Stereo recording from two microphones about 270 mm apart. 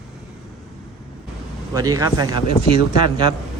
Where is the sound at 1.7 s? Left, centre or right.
Centre.